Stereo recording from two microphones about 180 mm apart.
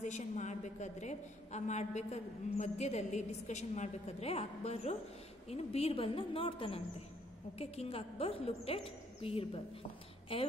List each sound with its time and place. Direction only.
0.0 s a woman's voice: 40° left (ahead or behind)